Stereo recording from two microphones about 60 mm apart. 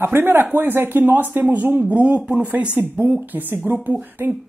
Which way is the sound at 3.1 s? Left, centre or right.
Right.